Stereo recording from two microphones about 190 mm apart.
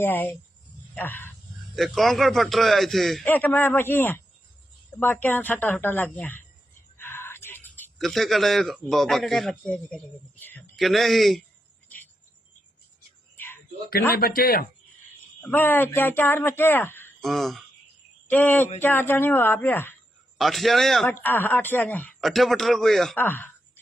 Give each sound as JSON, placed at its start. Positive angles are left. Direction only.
{"t": 0.0, "sound": "speech", "side_deg": 10}
{"t": 1.7, "sound": "speech", "side_deg": 0}
{"t": 10.8, "sound": "speech", "side_deg": 0}
{"t": 13.3, "sound": "a sound", "side_deg": 10}
{"t": 14.2, "sound": "speech", "side_deg": 50}
{"t": 15.4, "sound": "speech", "side_deg": 10}
{"t": 17.2, "sound": "speech", "side_deg": 0}
{"t": 20.4, "sound": "speech", "side_deg": 0}